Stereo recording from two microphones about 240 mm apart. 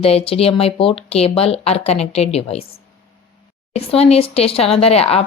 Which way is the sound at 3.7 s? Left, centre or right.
Left.